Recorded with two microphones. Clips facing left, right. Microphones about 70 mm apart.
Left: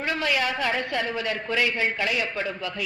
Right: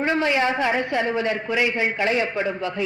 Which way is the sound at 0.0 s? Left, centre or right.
Right.